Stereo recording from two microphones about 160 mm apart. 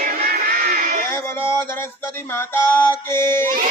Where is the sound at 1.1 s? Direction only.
15° left (ahead or behind).